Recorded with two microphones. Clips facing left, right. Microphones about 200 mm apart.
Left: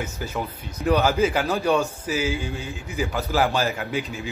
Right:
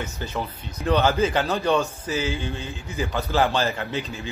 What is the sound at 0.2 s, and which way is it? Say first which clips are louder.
A man's voice: left 1 dB; 10° left (ahead or behind).